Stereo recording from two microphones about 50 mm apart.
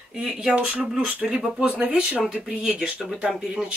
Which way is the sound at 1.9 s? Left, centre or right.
Centre.